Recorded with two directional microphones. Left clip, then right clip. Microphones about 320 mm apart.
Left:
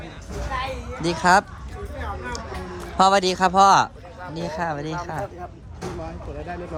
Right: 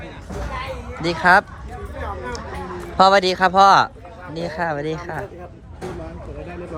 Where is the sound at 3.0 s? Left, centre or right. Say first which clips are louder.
Right 3 dB; centre.